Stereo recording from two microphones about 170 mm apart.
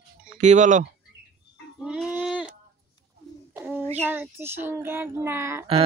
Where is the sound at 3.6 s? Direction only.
10° right (ahead or behind).